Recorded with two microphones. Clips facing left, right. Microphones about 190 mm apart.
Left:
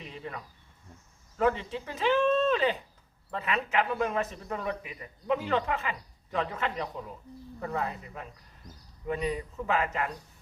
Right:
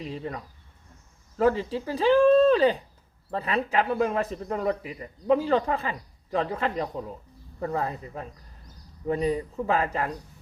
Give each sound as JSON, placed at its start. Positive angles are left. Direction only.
{"t": 0.0, "sound": "insect", "side_deg": -35}
{"t": 1.4, "sound": "a man's voice", "side_deg": -35}